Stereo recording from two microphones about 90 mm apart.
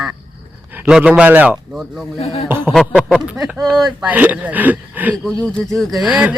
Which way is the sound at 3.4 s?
5° right (ahead or behind).